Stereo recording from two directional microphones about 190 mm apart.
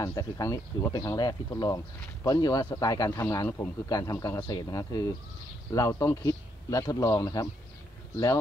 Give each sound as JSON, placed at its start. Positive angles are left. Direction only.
{"t": 0.0, "sound": "a man's voice", "side_deg": 15}